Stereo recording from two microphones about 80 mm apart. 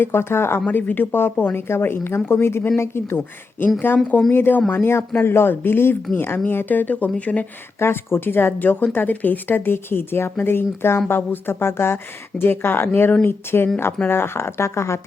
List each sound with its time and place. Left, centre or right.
0.0 s speech: left
7.8 s speech: left